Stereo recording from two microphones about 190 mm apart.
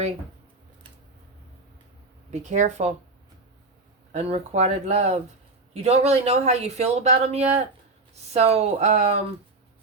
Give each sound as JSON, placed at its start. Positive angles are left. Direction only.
{"t": 2.3, "sound": "speech", "side_deg": -35}
{"t": 4.1, "sound": "speech", "side_deg": -35}